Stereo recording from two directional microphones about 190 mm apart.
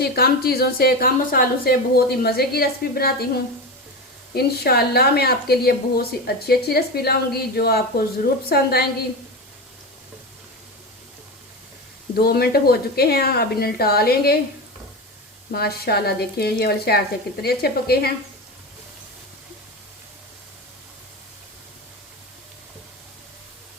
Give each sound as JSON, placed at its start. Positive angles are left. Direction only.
{"t": 0.0, "sound": "a woman's voice", "side_deg": 55}
{"t": 4.4, "sound": "a woman's voice", "side_deg": 55}
{"t": 12.1, "sound": "a woman's voice", "side_deg": 55}
{"t": 15.5, "sound": "a woman's voice", "side_deg": 55}